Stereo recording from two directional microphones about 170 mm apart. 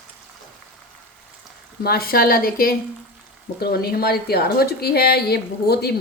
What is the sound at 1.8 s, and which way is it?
A woman's voice, 65° left (ahead or behind).